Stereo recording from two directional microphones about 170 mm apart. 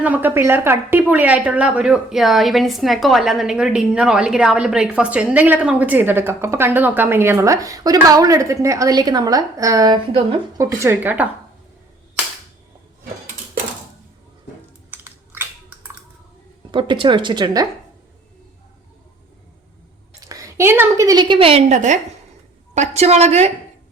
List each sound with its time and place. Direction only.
0.0 s a woman's voice: 10° right (ahead or behind); by 10.4 s 30° right (ahead or behind)
10.6 s a woman's voice: 15° right (ahead or behind)
14.8 s crushing: 10° right (ahead or behind)
16.7 s a woman's voice: 30° right (ahead or behind)
20.2 s a woman's voice: 20° right (ahead or behind)
21.7 s a woman's voice: 45° right (ahead or behind)